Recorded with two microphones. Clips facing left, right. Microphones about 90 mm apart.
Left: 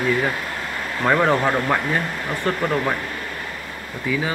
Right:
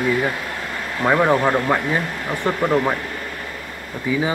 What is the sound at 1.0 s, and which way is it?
A man's voice, 10° right (ahead or behind).